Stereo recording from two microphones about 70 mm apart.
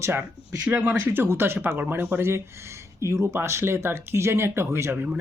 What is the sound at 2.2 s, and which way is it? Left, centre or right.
Speech, right.